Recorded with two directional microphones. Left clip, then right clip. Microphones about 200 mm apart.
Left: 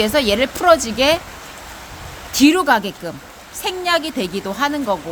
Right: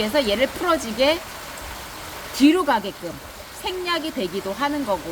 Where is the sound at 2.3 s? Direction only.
55° left (ahead or behind).